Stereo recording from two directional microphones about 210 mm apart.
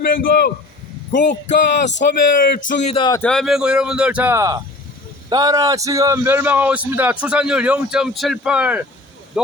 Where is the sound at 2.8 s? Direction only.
25° left (ahead or behind).